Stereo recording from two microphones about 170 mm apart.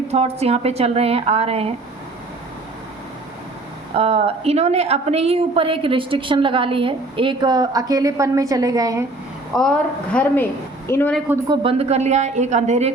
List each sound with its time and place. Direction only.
0.1 s a woman's voice: 40° right (ahead or behind)
3.9 s a woman's voice: 35° right (ahead or behind); by 9.0 s 20° right (ahead or behind)
9.5 s a woman's voice: 5° left (ahead or behind)
11.4 s a woman's voice: 35° right (ahead or behind)